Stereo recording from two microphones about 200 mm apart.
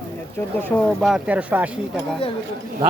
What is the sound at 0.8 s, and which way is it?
Speech, centre (ahead or behind).